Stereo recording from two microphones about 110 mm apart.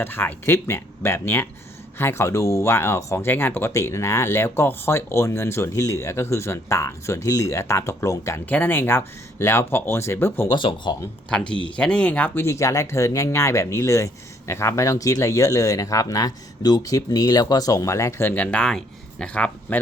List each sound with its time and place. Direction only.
0.0 s speech: 20° left (ahead or behind)
10.5 s speech: 45° left (ahead or behind)
11.3 s speech: 10° left (ahead or behind)